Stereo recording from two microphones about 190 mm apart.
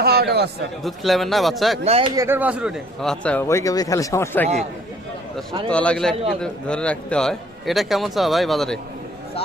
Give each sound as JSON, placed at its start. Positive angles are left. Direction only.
{"t": 0.0, "sound": "a man's voice", "side_deg": -55}
{"t": 0.9, "sound": "a man's voice", "side_deg": 0}
{"t": 1.8, "sound": "speech", "side_deg": -35}
{"t": 2.1, "sound": "speech", "side_deg": -10}
{"t": 5.6, "sound": "a man's voice", "side_deg": 5}